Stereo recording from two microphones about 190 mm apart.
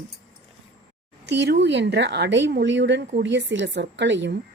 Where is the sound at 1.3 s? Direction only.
65° right (ahead or behind).